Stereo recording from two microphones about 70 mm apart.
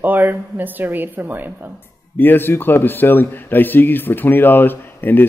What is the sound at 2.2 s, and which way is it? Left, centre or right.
Speech, left.